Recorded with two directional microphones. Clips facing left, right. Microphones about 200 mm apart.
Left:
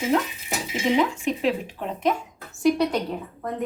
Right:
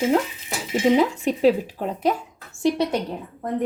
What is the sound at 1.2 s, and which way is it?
Speech, 35° right (ahead or behind).